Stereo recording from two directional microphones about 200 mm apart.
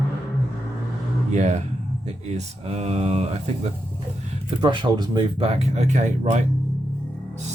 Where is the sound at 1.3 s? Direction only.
35° right (ahead or behind).